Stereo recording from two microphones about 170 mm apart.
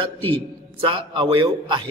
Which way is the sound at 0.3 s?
30° right (ahead or behind).